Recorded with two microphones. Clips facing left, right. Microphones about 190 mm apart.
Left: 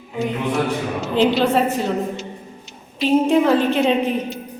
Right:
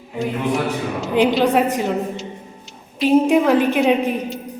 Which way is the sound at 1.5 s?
15° right (ahead or behind).